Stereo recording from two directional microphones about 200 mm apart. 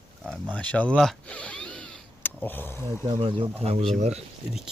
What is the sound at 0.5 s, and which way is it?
Speech, 5° left (ahead or behind).